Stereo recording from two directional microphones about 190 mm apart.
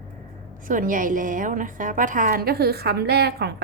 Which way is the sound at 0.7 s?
45° right (ahead or behind).